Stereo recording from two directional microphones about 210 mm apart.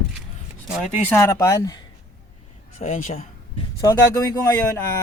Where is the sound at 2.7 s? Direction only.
30° left (ahead or behind).